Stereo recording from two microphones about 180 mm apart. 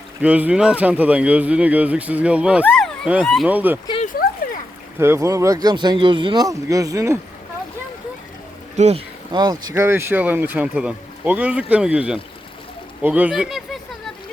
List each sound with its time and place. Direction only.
0.2 s speech: 10° right (ahead or behind)
4.9 s speech: 15° right (ahead or behind)
8.7 s speech: 40° right (ahead or behind)
9.3 s speech: 25° right (ahead or behind); by 13.6 s 5° right (ahead or behind)